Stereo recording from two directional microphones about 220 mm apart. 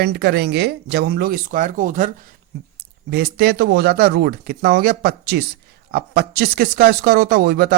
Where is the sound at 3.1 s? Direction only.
45° right (ahead or behind).